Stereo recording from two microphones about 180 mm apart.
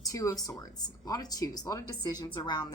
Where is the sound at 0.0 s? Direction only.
20° left (ahead or behind).